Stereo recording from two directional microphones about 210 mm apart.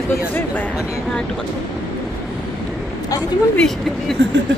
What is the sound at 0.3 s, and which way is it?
Speech, 10° left (ahead or behind).